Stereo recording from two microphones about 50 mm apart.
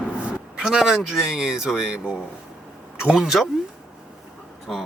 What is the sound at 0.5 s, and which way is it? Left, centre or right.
Speech, centre.